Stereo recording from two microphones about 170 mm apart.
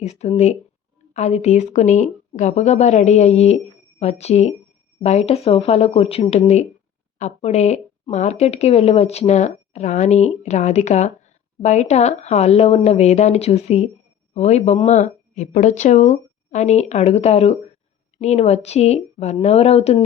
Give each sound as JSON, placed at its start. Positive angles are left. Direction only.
{"t": 0.0, "sound": "speech", "side_deg": 40}